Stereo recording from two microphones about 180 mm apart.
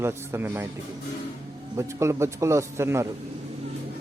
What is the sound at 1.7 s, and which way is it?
A man's voice, 15° right (ahead or behind).